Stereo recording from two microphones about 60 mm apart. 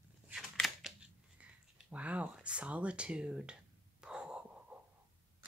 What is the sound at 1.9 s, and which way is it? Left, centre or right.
Speech, right.